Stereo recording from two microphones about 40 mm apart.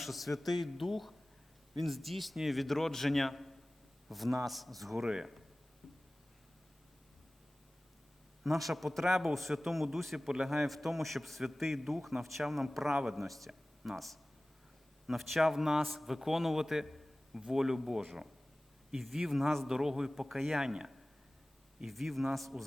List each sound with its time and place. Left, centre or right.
0.0 s a man's voice: centre
5.0 s speech: right
5.8 s a sound: centre
8.4 s a man's voice: centre
16.8 s a sound: centre
17.4 s a man's voice: centre
21.8 s a man's voice: centre